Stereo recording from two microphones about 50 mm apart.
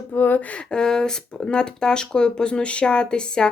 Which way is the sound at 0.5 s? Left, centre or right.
Centre.